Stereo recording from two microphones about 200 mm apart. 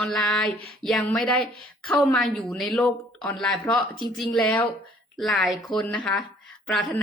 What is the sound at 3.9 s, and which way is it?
Speech, 20° left (ahead or behind).